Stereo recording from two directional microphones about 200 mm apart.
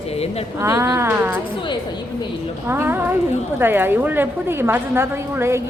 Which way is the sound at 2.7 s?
10° right (ahead or behind).